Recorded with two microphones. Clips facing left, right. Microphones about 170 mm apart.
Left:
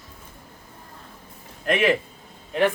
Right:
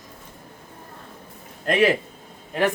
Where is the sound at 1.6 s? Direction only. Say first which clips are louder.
Right 2 dB; 35° right (ahead or behind).